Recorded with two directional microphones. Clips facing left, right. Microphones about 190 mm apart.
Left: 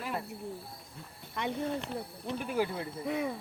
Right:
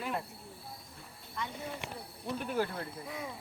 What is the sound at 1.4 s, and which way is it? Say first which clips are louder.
Speech: left 6 dB; 70° left (ahead or behind).